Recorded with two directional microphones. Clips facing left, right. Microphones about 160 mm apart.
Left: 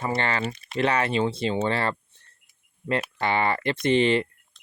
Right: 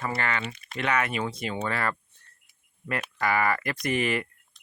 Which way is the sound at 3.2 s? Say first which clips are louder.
Right 1 dB; 25° left (ahead or behind).